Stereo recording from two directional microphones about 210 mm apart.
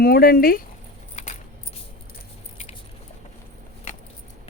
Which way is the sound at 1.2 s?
35° left (ahead or behind).